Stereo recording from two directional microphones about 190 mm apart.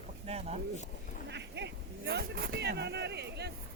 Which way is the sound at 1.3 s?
65° right (ahead or behind).